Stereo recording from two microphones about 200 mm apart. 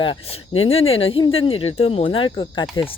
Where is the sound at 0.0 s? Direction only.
25° left (ahead or behind).